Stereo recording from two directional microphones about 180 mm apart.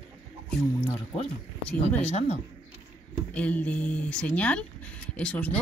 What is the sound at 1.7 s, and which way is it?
Speech, 10° left (ahead or behind).